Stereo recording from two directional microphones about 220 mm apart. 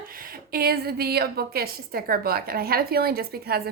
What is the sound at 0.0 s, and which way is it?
A woman's voice, 40° right (ahead or behind).